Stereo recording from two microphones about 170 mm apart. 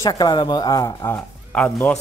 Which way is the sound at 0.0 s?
25° left (ahead or behind).